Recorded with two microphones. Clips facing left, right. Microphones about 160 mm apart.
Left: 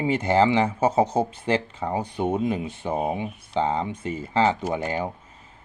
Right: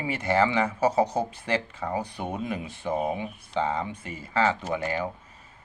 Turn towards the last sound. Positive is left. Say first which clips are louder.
# left 2 dB
turn(degrees=25)  # may be behind; listen again after turning